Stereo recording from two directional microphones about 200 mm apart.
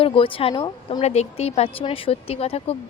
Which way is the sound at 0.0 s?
25° left (ahead or behind).